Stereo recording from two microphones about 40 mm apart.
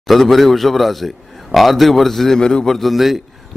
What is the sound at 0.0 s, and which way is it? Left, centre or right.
A man's voice, centre.